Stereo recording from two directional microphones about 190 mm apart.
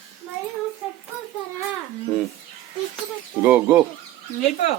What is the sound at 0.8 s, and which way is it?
Child singing, centre (ahead or behind).